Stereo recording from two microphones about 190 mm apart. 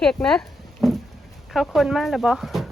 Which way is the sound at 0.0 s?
5° left (ahead or behind).